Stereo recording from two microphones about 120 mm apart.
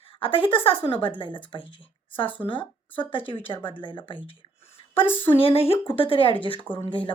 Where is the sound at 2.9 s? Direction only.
45° left (ahead or behind).